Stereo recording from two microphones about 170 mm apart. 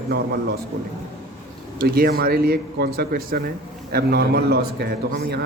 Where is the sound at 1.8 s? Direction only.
65° right (ahead or behind).